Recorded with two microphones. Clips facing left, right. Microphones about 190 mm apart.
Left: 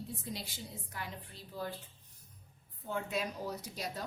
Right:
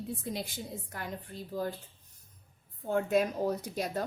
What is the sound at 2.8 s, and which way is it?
A woman's voice, 50° right (ahead or behind).